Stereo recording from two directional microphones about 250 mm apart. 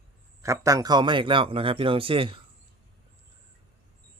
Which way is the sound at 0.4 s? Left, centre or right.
Centre.